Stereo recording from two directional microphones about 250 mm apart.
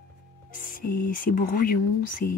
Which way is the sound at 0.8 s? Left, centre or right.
Left.